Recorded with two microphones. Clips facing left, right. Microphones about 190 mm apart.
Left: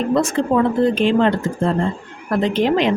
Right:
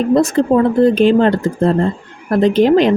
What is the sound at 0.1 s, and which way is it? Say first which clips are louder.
A woman's voice: right 6 dB; 40° right (ahead or behind).